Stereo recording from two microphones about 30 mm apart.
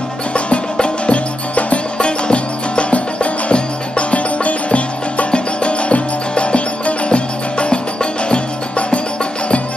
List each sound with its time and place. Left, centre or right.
0.3 s music: left
2.0 s music: left